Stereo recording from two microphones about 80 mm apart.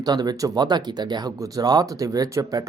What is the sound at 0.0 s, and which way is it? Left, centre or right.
Speech, right.